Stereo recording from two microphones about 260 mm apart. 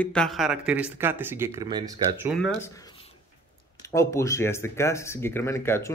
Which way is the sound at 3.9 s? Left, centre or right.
Centre.